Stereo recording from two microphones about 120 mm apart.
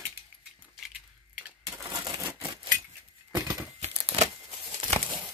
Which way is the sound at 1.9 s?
35° right (ahead or behind).